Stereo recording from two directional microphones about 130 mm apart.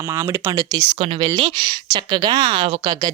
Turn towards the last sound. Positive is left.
turn(degrees=-35)  # may be behind; listen again after turning